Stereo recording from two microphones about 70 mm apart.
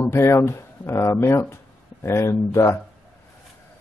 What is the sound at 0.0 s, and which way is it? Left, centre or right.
Speech, left.